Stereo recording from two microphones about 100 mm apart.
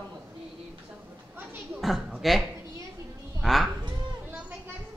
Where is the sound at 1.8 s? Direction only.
Centre (ahead or behind).